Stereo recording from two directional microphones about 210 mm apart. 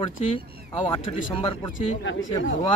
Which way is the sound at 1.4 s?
25° left (ahead or behind).